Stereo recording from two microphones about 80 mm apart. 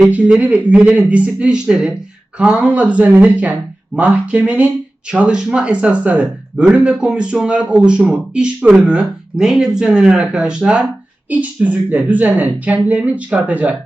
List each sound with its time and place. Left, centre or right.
0.0 s speech: centre